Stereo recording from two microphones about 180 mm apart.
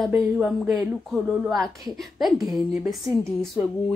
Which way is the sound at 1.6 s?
20° right (ahead or behind).